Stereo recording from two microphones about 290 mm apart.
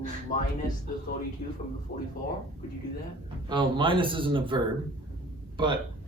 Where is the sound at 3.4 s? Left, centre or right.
Centre.